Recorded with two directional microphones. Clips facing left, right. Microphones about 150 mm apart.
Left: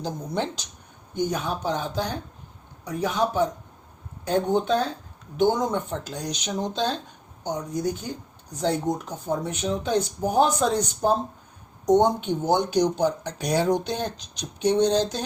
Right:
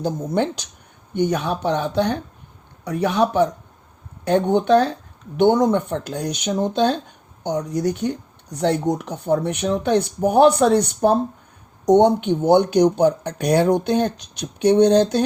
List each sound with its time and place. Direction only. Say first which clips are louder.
0.0 s speech: right 7 dB; 55° right (ahead or behind)
1.1 s speech: right 6 dB; 70° right (ahead or behind)
7.4 s speech: right 5 dB; 70° right (ahead or behind)